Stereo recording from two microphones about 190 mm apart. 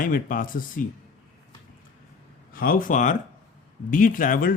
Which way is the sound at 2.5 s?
50° left (ahead or behind).